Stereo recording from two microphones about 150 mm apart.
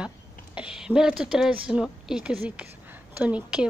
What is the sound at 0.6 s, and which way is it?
A woman's voice, 5° right (ahead or behind).